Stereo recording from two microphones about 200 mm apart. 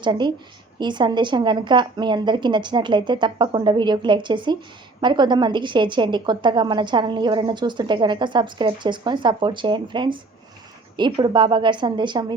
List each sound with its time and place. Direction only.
0.0 s a woman's voice: 20° right (ahead or behind)